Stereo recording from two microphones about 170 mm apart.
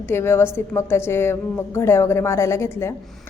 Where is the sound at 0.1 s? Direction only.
15° left (ahead or behind).